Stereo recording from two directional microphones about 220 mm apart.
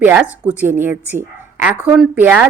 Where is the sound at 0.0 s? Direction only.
5° right (ahead or behind).